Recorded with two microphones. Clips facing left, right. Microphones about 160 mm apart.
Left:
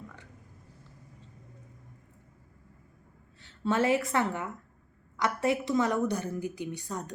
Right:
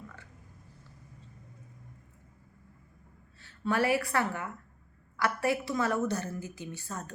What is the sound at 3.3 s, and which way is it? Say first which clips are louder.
A woman's voice: left 2 dB; 20° left (ahead or behind).